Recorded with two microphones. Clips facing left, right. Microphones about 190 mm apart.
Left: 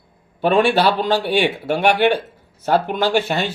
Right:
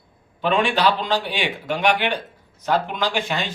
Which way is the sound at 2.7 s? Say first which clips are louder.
Left 5 dB; 45° left (ahead or behind).